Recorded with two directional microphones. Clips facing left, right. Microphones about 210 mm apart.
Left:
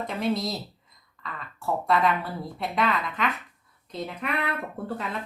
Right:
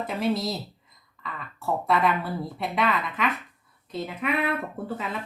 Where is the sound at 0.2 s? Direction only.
Centre (ahead or behind).